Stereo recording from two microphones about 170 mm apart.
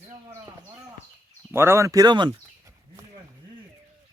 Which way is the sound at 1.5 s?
15° right (ahead or behind).